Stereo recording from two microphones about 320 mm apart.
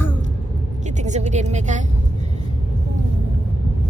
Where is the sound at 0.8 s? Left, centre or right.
Right.